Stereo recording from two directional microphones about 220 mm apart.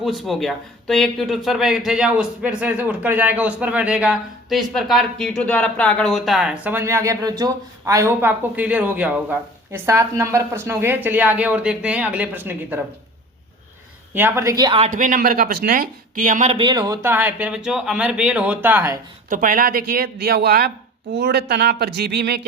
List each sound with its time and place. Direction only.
0.0 s speech: centre (ahead or behind)
14.1 s speech: 10° right (ahead or behind)
14.8 s speech: 35° right (ahead or behind); by 18.9 s 10° right (ahead or behind)
19.3 s speech: 40° right (ahead or behind)